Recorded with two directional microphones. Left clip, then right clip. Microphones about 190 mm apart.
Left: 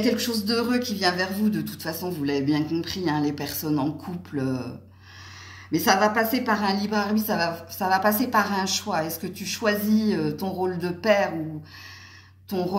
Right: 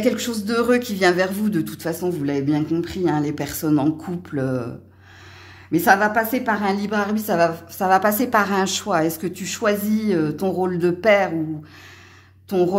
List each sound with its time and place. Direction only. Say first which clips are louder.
0.0 s speech: right 3 dB; 45° right (ahead or behind)
5.7 s a woman's voice: right 4 dB; 45° right (ahead or behind)